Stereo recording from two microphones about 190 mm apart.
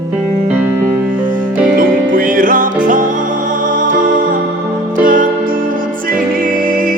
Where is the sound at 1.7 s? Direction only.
45° right (ahead or behind).